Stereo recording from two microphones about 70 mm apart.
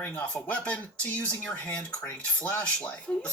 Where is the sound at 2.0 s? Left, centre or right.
Left.